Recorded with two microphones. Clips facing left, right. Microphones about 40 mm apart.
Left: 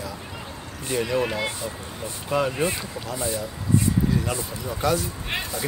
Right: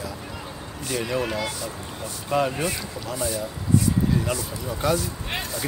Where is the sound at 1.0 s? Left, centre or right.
Centre.